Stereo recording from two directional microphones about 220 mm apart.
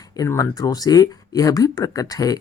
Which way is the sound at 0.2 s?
15° left (ahead or behind).